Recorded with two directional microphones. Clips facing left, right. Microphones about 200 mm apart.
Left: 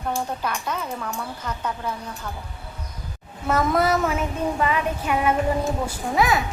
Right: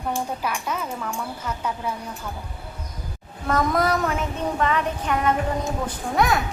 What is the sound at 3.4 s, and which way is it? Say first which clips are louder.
Child singing: left 1 dB; 5° left (ahead or behind).